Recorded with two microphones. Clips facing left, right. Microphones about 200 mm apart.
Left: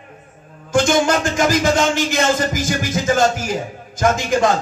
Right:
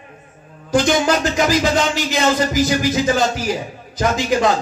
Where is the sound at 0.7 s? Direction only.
50° left (ahead or behind).